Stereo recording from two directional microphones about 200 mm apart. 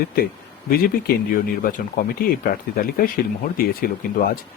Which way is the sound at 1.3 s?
45° left (ahead or behind).